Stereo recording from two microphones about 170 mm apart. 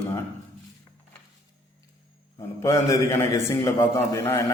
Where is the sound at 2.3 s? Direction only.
20° left (ahead or behind).